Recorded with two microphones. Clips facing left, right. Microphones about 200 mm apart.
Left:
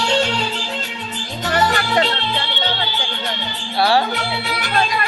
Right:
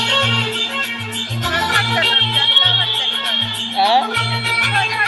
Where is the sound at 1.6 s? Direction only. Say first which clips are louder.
Left 4 dB; 75° right (ahead or behind).